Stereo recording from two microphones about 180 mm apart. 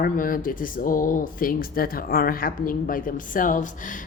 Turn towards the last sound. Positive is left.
turn(degrees=45)  # may be behind; listen again after turning